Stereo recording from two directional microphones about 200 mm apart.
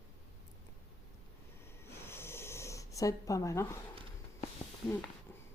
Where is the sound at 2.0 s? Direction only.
10° left (ahead or behind).